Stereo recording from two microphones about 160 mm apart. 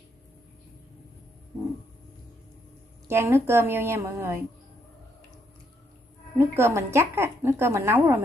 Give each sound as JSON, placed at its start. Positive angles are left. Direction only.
{"t": 3.1, "sound": "a woman's voice", "side_deg": -15}
{"t": 6.3, "sound": "a woman's voice", "side_deg": -15}